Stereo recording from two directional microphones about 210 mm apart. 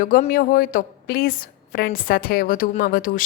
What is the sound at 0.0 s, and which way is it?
A woman's voice, 40° left (ahead or behind).